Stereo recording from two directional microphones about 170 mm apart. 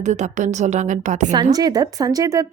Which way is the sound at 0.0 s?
45° right (ahead or behind).